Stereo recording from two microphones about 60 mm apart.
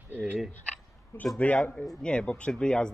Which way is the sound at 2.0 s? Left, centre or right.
Centre.